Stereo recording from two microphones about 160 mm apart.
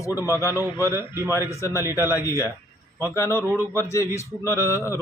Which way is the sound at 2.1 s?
20° left (ahead or behind).